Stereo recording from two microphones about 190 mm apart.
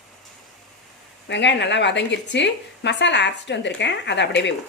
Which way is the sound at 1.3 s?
65° left (ahead or behind).